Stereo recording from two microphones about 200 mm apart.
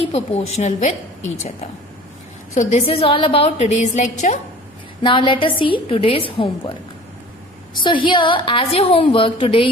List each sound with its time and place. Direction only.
0.0 s a woman's voice: 30° left (ahead or behind)
2.6 s a woman's voice: 35° left (ahead or behind)
5.0 s a woman's voice: 25° left (ahead or behind)
7.7 s a woman's voice: 25° left (ahead or behind)